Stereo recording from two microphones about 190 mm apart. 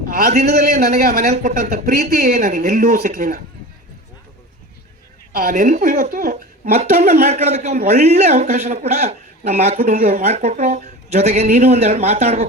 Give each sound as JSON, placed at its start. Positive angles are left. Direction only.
{"t": 0.1, "sound": "a man's voice", "side_deg": -50}
{"t": 5.3, "sound": "a man's voice", "side_deg": -50}
{"t": 7.3, "sound": "speech", "side_deg": -35}